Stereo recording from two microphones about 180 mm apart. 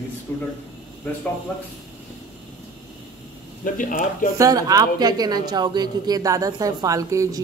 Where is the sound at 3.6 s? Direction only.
50° left (ahead or behind).